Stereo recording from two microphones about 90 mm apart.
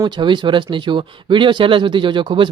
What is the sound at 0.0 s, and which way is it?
Speech, 60° right (ahead or behind).